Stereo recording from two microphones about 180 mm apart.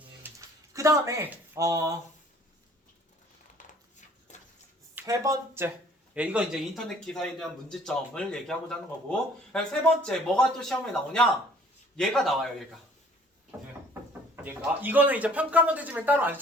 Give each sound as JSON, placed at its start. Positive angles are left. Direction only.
{"t": 0.2, "sound": "a sound", "side_deg": -15}
{"t": 4.9, "sound": "a man's voice", "side_deg": -15}
{"t": 14.4, "sound": "speech", "side_deg": -10}